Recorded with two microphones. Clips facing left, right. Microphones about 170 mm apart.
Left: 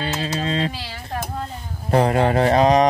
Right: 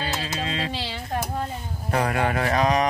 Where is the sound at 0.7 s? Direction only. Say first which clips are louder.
Left 1 dB; 25° right (ahead or behind).